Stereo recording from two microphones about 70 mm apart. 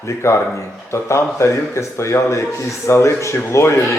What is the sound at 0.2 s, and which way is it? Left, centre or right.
Speech, left.